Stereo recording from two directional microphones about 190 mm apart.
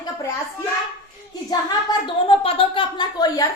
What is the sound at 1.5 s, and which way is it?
A woman's voice, 25° left (ahead or behind).